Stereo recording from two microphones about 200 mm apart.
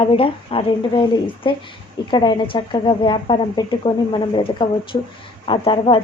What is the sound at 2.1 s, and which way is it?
A woman's voice, 20° left (ahead or behind).